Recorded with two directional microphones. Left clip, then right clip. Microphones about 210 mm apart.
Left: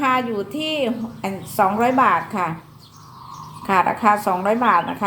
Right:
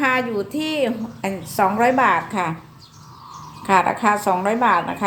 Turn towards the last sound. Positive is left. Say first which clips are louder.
# even
turn(degrees=-15)  # may be behind; listen again after turning